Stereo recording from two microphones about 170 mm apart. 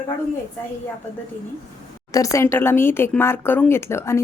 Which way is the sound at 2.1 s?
20° left (ahead or behind).